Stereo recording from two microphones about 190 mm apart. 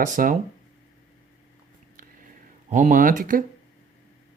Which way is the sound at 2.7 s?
40° right (ahead or behind).